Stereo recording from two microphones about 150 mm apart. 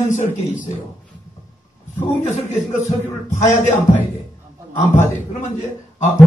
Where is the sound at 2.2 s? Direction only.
50° left (ahead or behind).